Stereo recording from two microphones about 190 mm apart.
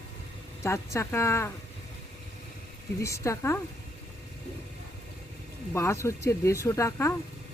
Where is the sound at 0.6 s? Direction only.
15° left (ahead or behind).